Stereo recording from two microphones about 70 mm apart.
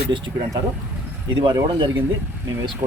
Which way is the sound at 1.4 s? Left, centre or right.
Right.